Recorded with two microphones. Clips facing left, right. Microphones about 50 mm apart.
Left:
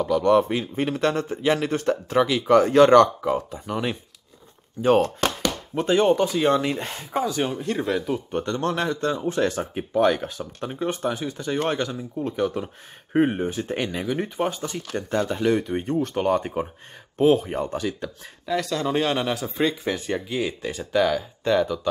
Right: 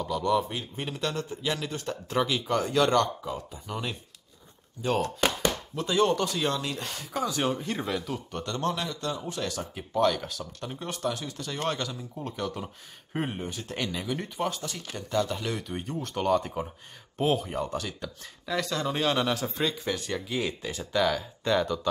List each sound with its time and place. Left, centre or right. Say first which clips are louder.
0.2 s speech: left 6 dB; left
2.0 s speech: left 4 dB; centre
2.5 s speech: left 11 dB; left
5.8 s speech: left 6 dB; left
6.6 s speech: left 7 dB; left
7.2 s speech: even; centre
8.1 s speech: left 8 dB; left
8.6 s speech: left 5 dB; left
17.7 s speech: left 6 dB; centre
19.8 s speech: left 5 dB; centre
20.2 s speech: left 4 dB; centre